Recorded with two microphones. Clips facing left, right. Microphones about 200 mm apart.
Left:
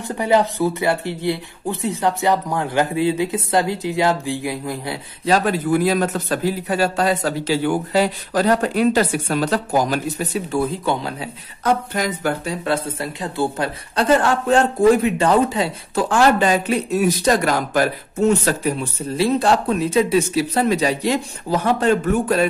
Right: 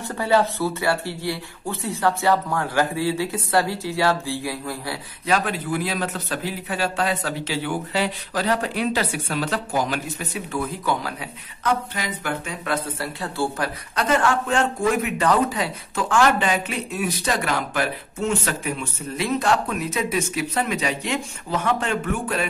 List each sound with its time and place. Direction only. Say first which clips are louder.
0.1 s speech: left 3 dB; 20° left (ahead or behind)
5.2 s a man's voice: left 5 dB; 35° left (ahead or behind)
11.6 s speech: left 5 dB; 40° left (ahead or behind); by 13.7 s 20° left (ahead or behind)
13.9 s a man's voice: left 4 dB; 35° left (ahead or behind)